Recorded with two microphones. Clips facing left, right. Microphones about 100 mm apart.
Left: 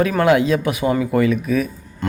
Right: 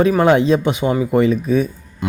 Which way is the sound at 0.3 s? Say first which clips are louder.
Right 2 dB; 30° right (ahead or behind).